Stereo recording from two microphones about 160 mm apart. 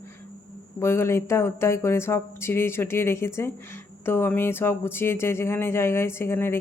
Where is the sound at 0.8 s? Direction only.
15° left (ahead or behind).